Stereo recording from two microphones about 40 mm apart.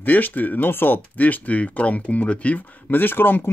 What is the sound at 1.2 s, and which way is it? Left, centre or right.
Speech, left.